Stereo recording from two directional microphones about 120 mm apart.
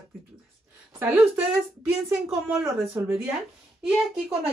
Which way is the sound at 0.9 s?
15° right (ahead or behind).